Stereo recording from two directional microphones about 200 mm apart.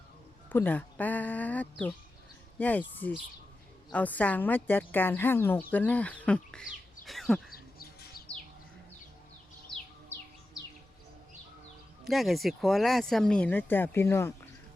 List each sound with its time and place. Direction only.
0.5 s a woman's voice: 10° left (ahead or behind)
12.0 s speech: centre (ahead or behind)